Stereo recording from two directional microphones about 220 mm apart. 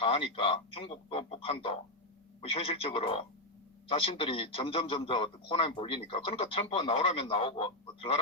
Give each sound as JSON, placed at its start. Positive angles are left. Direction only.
{"t": 0.0, "sound": "a man's voice", "side_deg": 25}